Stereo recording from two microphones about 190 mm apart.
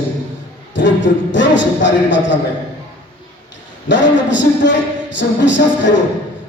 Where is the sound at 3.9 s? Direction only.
70° left (ahead or behind).